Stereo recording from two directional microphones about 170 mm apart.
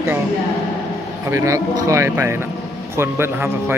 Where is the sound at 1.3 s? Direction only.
20° right (ahead or behind).